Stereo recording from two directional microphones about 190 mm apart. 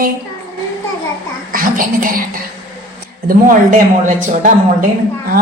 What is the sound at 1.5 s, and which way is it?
Speech, 45° right (ahead or behind).